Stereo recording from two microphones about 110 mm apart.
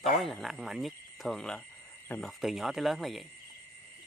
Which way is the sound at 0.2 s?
Centre (ahead or behind).